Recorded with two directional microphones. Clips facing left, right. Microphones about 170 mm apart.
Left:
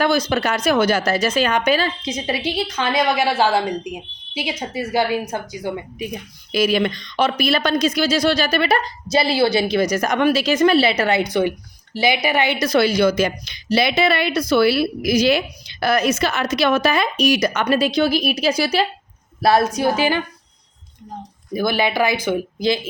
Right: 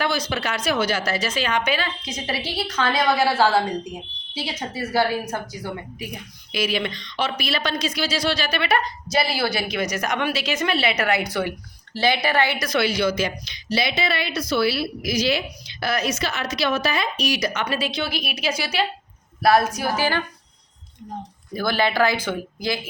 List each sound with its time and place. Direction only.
0.0 s a woman's voice: 45° left (ahead or behind)
2.0 s a woman's voice: 20° left (ahead or behind)
6.5 s a woman's voice: 45° left (ahead or behind)
19.4 s speech: 25° left (ahead or behind)
21.5 s a woman's voice: 15° left (ahead or behind)